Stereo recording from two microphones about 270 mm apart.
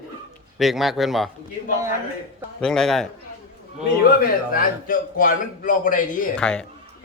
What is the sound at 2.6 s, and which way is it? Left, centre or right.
Speech, centre.